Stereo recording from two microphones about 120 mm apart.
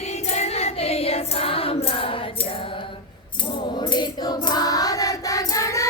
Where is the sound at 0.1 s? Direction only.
65° left (ahead or behind); by 2.5 s 50° left (ahead or behind).